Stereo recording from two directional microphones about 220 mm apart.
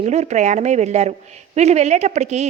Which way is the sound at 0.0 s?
30° right (ahead or behind).